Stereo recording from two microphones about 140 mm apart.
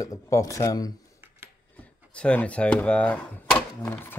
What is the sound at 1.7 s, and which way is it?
Speech, 10° left (ahead or behind).